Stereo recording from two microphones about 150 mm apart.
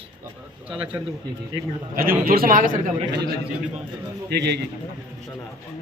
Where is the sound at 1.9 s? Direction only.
80° right.